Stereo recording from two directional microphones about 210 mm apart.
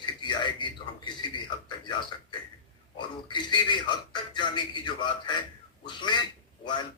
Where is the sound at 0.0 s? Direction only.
20° left (ahead or behind).